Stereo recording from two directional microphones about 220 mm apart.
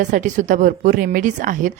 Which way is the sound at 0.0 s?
35° right (ahead or behind).